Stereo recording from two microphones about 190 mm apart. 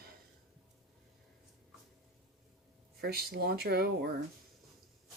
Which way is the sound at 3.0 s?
55° right (ahead or behind).